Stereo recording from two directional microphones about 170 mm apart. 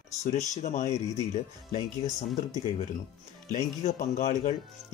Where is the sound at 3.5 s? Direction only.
45° left (ahead or behind).